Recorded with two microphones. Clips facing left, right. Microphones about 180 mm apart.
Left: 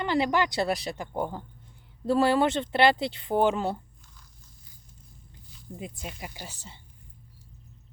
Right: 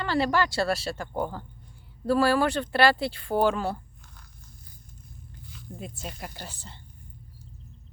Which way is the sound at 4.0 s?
55° right (ahead or behind).